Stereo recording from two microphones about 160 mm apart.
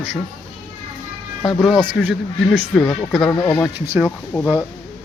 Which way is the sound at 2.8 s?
20° left (ahead or behind).